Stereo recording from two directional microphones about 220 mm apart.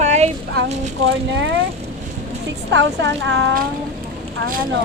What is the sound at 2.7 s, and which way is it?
Speech, 55° right (ahead or behind).